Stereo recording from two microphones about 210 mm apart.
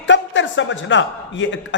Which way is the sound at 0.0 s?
60° left (ahead or behind).